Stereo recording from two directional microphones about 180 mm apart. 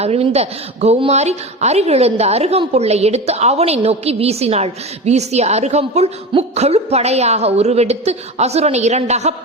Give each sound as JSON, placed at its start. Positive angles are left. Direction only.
{"t": 0.0, "sound": "a woman's voice", "side_deg": -35}